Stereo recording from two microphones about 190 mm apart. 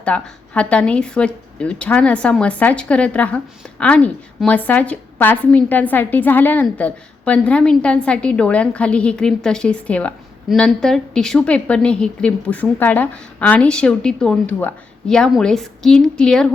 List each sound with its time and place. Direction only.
0.0 s speech: 5° left (ahead or behind)